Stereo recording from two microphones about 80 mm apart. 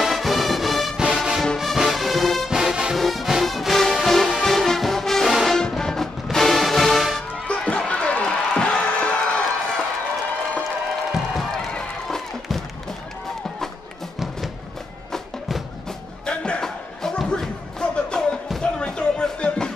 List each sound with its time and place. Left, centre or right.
0.0 s music: centre
7.2 s music: centre
11.3 s run: centre
15.1 s music: centre
16.3 s music: centre